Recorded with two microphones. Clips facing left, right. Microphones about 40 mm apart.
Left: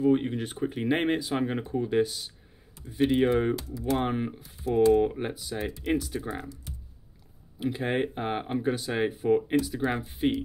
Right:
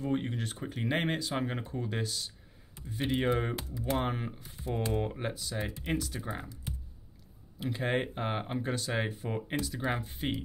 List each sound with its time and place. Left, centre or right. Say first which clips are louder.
0.0 s speech: left 8 dB; centre
3.5 s speech: left 4 dB; right
4.0 s speech: left 5 dB; centre
7.5 s speech: left 3 dB; centre